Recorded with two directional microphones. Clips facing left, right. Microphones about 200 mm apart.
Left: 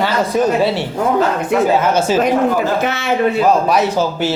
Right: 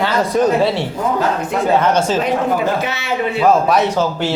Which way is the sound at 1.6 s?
5° left (ahead or behind).